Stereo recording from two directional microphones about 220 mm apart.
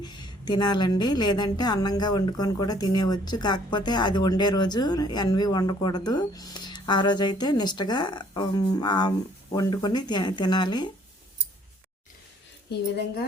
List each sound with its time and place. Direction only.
0.0 s a woman's voice: 20° left (ahead or behind)